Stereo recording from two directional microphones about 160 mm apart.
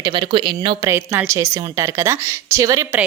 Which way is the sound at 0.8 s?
15° right (ahead or behind).